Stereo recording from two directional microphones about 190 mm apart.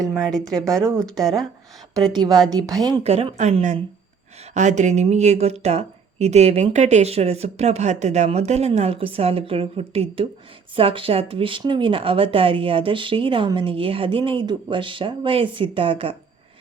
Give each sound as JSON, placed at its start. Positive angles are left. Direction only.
{"t": 0.2, "sound": "speech", "side_deg": 0}
{"t": 2.5, "sound": "speech", "side_deg": -20}
{"t": 3.0, "sound": "speech", "side_deg": -30}